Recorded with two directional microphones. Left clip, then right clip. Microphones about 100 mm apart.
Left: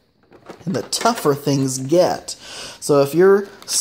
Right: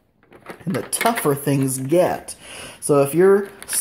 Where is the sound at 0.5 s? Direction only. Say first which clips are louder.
Left 3 dB; 20° left (ahead or behind).